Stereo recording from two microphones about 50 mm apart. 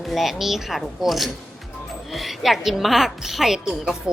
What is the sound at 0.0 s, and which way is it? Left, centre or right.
A woman's voice, centre.